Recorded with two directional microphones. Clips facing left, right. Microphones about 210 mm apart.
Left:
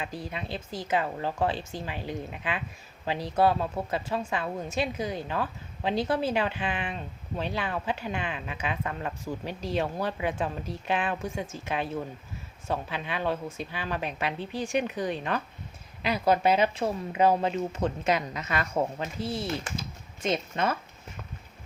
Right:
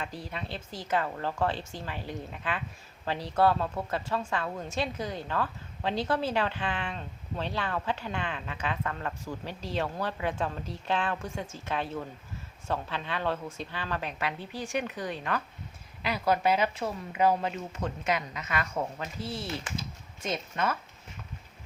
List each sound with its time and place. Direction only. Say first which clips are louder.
0.0 s a woman's voice: left 2 dB; 15° left (ahead or behind); by 19.0 s 30° left (ahead or behind)
19.2 s a woman's voice: left 5 dB; 15° left (ahead or behind)
19.5 s speech: left 3 dB; 40° left (ahead or behind)
20.2 s speech: left 3 dB; 25° left (ahead or behind)